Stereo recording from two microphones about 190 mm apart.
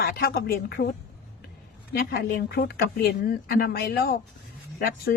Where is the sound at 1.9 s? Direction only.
55° left (ahead or behind).